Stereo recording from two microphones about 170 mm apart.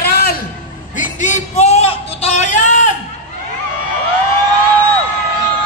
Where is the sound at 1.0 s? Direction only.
45° left (ahead or behind).